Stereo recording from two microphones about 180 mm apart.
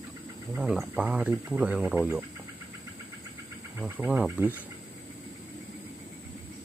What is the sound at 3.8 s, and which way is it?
Speech, 10° right (ahead or behind).